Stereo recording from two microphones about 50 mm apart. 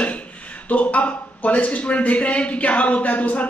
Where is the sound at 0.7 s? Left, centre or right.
Left.